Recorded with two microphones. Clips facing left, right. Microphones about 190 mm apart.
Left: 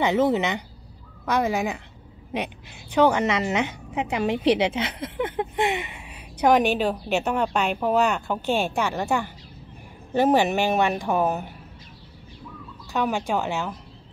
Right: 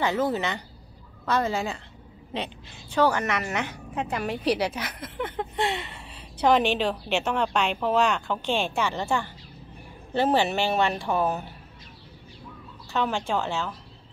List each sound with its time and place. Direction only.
0.0 s a woman's voice: 20° left (ahead or behind)
5.2 s a woman's voice: 15° left (ahead or behind)
12.9 s a woman's voice: 10° left (ahead or behind)